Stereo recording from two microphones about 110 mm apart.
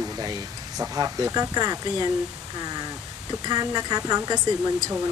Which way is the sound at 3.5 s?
40° right (ahead or behind).